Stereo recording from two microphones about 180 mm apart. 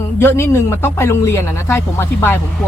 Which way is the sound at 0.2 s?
10° left (ahead or behind).